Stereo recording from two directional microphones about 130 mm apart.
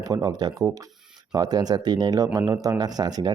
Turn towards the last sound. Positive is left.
turn(degrees=-30)  # may be behind; listen again after turning